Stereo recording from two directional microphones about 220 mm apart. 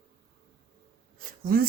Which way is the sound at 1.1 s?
40° right (ahead or behind).